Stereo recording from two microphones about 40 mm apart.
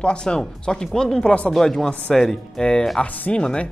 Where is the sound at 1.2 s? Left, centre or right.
Left.